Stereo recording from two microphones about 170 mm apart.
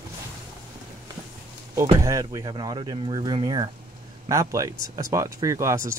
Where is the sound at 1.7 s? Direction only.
20° right (ahead or behind).